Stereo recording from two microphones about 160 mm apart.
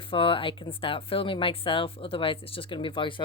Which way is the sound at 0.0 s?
35° left (ahead or behind).